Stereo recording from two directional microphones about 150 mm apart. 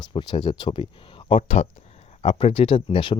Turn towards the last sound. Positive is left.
turn(degrees=40)  # may be behind; listen again after turning